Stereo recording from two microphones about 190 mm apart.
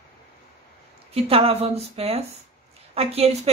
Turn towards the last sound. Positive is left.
turn(degrees=-30)  # may be behind; listen again after turning